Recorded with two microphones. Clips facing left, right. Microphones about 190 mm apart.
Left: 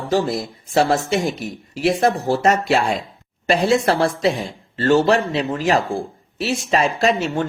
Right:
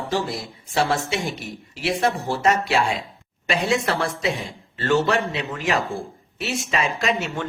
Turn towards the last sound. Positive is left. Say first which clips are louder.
# left 6 dB
turn(degrees=35)  # may be behind; listen again after turning